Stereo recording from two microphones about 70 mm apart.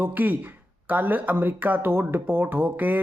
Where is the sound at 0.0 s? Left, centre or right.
Right.